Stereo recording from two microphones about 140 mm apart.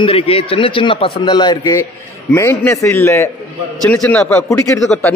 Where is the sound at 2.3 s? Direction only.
15° left (ahead or behind).